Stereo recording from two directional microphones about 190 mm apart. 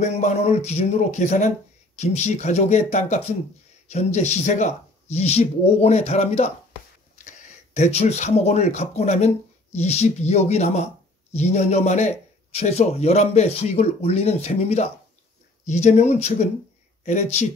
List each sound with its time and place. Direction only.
0.0 s a man's voice: 35° left (ahead or behind)